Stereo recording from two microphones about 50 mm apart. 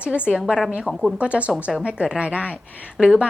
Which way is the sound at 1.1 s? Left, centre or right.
Right.